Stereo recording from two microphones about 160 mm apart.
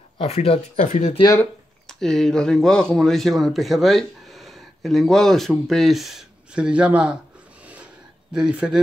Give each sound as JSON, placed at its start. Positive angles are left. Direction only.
{"t": 0.2, "sound": "speech", "side_deg": 40}
{"t": 1.4, "sound": "speech", "side_deg": 5}
{"t": 7.6, "sound": "a sound", "side_deg": -10}